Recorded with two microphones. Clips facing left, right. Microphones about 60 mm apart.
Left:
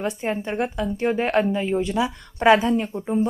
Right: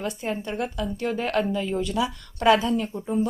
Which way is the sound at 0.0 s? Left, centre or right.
Left.